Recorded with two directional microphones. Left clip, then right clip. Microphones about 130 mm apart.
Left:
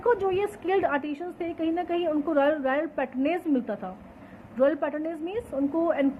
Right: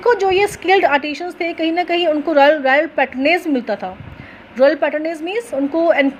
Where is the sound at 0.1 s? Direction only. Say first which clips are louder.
Right 11 dB; 30° right (ahead or behind).